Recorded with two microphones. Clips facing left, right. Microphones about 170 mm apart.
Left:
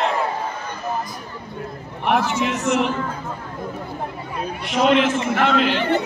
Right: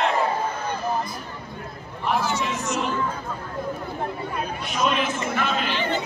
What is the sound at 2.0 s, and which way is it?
Speech, 70° left (ahead or behind).